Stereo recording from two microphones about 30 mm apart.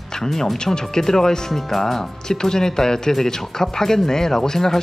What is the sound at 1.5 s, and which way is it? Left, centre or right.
Speech, centre.